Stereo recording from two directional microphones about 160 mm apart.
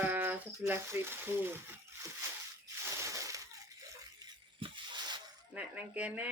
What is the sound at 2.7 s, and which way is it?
Crushing, 20° right (ahead or behind).